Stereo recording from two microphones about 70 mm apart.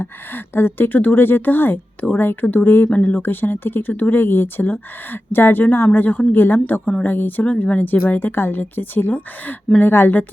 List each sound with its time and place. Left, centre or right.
0.0 s a woman's voice: left